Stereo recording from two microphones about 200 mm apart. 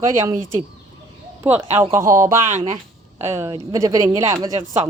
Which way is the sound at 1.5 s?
10° right (ahead or behind).